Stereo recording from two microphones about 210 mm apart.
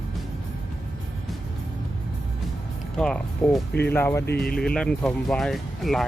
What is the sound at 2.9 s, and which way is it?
Speech, 5° left (ahead or behind).